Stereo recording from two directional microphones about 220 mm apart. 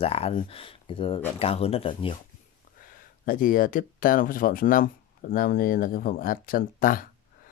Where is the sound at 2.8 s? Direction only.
40° left (ahead or behind).